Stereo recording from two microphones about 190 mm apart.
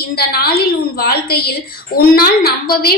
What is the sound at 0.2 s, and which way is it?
A woman's voice, 55° left (ahead or behind).